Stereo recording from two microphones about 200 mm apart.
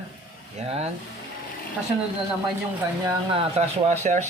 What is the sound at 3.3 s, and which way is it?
Speech, 35° right (ahead or behind).